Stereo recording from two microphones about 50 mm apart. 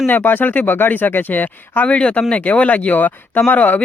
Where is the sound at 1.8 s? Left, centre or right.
Left.